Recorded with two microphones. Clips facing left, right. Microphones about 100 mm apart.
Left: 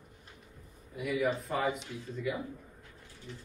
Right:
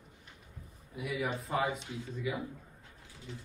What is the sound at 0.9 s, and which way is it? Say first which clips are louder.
Speech: left 4 dB; centre (ahead or behind).